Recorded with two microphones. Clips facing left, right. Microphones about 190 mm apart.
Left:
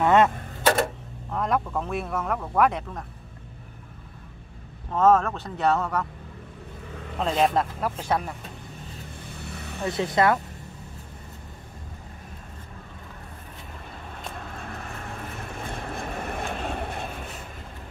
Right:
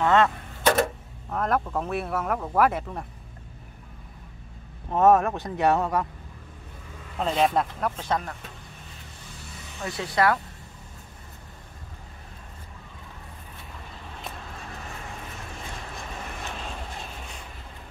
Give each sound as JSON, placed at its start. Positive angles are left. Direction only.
{"t": 0.0, "sound": "speech", "side_deg": 15}
{"t": 1.3, "sound": "speech", "side_deg": -5}
{"t": 4.9, "sound": "speech", "side_deg": -15}
{"t": 7.2, "sound": "speech", "side_deg": 0}
{"t": 9.5, "sound": "vehicle", "side_deg": 60}
{"t": 9.8, "sound": "speech", "side_deg": 20}
{"t": 15.5, "sound": "vehicle", "side_deg": 55}